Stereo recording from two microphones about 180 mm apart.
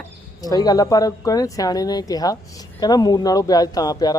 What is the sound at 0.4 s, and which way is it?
Speech, 20° left (ahead or behind).